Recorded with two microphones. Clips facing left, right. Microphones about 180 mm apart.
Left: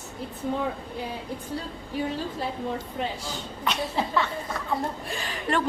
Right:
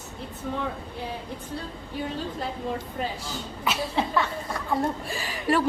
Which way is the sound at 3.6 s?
5° right (ahead or behind).